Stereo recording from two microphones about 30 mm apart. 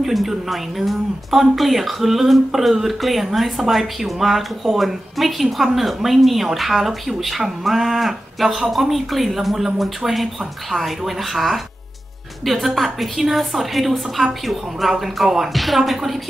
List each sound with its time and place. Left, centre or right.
0.0 s a woman's voice: centre